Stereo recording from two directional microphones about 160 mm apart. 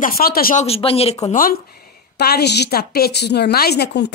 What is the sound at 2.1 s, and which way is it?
A woman's voice, 85° left.